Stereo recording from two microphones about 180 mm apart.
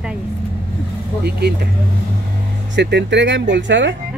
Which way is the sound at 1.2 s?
60° right (ahead or behind).